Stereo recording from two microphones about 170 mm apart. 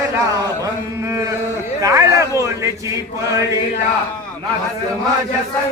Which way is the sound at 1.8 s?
20° right (ahead or behind).